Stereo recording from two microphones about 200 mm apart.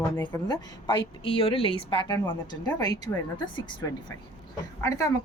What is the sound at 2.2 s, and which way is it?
A woman's voice, 20° left (ahead or behind).